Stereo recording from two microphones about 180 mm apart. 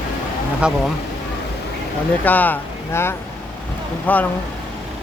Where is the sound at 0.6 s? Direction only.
5° right (ahead or behind).